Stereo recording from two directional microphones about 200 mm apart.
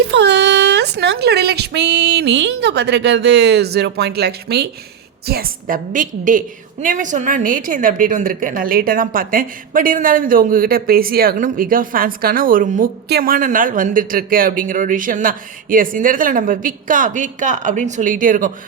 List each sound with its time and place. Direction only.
0.0 s a woman's voice: 60° right (ahead or behind); by 18.5 s 40° right (ahead or behind)